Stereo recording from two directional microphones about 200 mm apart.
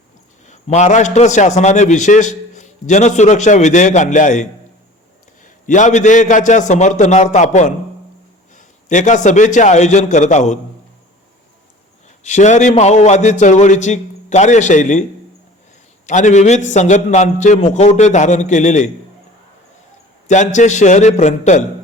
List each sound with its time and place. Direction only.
0.4 s a man's voice: 35° left (ahead or behind)
5.6 s a man's voice: 40° left (ahead or behind)
12.2 s a man's voice: 35° left (ahead or behind)
16.0 s a man's voice: 35° left (ahead or behind)
20.2 s a man's voice: 35° left (ahead or behind)